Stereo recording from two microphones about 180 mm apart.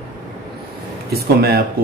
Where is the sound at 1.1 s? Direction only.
60° right (ahead or behind).